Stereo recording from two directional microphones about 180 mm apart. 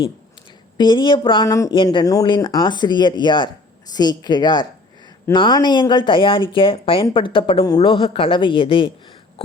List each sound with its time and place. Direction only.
0.8 s speech: 25° left (ahead or behind)
1.7 s speech: 25° left (ahead or behind)